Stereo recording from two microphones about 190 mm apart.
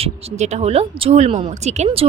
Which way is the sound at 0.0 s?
35° right (ahead or behind).